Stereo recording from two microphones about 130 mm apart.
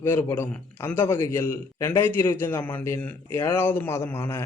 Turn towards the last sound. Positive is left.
turn(degrees=20)  # may be behind; listen again after turning